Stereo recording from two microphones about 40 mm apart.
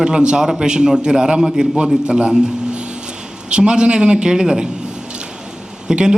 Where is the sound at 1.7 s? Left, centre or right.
Right.